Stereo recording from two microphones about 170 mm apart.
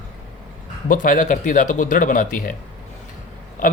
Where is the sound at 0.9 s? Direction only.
50° left (ahead or behind).